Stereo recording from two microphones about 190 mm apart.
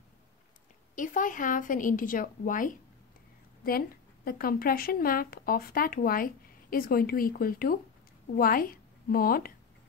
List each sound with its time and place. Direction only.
0.9 s a woman's voice: 45° left (ahead or behind)